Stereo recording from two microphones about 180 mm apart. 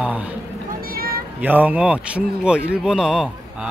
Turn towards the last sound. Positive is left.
turn(degrees=-5)  # may be behind; listen again after turning